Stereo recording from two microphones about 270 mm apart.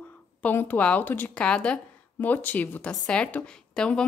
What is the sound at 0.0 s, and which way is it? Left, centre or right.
Speech, centre.